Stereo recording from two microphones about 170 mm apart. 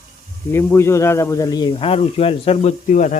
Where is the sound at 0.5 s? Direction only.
15° left (ahead or behind); by 3.2 s 45° left (ahead or behind).